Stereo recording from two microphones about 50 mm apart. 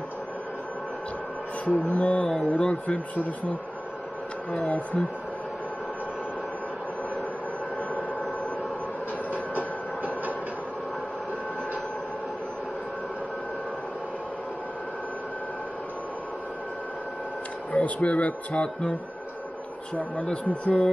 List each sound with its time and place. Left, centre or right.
1.7 s speech: left
4.5 s speech: left
9.3 s train: right
17.7 s speech: left
20.2 s speech: left